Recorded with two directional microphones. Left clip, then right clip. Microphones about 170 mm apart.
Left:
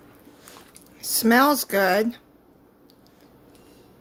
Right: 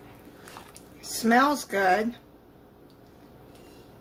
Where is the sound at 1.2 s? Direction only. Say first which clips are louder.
Left 3 dB; 60° left (ahead or behind).